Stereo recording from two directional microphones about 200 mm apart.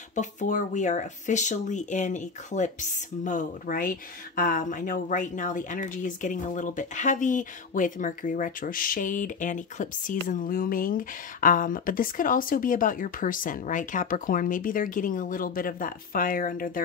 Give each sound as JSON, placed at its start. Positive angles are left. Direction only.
{"t": 0.1, "sound": "speech", "side_deg": 40}